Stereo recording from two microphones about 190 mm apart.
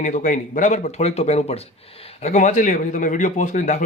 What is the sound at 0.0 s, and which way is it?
Speech, 40° left (ahead or behind).